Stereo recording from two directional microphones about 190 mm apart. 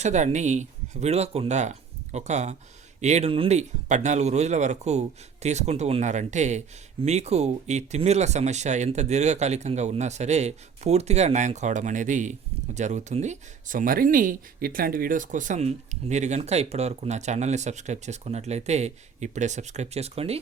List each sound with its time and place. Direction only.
0.0 s speech: 35° right (ahead or behind)